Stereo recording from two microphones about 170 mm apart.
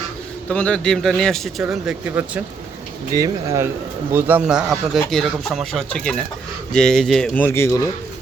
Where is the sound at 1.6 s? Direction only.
10° right (ahead or behind).